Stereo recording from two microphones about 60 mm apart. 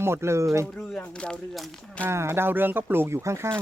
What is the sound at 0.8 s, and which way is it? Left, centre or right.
Speech, centre.